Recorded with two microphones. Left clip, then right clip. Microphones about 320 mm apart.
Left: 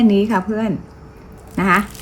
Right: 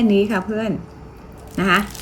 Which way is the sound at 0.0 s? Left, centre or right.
Centre.